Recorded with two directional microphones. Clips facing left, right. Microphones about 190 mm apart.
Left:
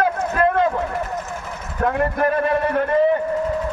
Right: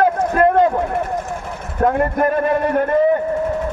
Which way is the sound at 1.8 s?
45° right (ahead or behind).